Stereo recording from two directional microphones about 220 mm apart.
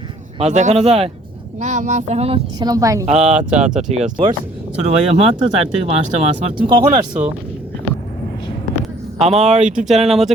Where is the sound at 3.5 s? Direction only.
30° right (ahead or behind).